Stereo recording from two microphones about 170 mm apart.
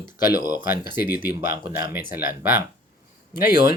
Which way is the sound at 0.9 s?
10° right (ahead or behind).